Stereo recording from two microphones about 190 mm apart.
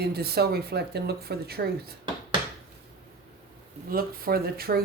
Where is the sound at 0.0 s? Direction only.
55° right (ahead or behind).